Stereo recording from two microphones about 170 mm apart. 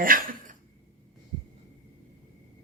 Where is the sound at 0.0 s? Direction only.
55° right (ahead or behind).